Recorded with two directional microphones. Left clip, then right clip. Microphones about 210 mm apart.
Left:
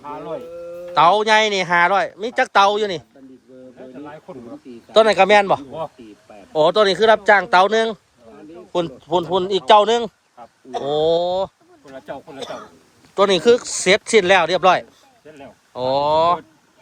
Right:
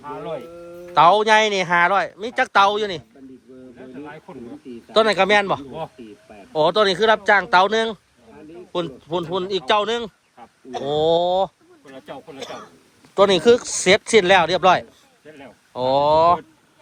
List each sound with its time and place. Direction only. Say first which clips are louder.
0.0 s speech: left 1 dB; centre (ahead or behind)
0.9 s speech: even; 10° left (ahead or behind)
4.9 s a man's voice: left 4 dB; 15° left (ahead or behind)
10.8 s speech: even; 10° left (ahead or behind)
12.4 s speech: left 1 dB; 55° left (ahead or behind)
13.1 s speech: even; 10° left (ahead or behind)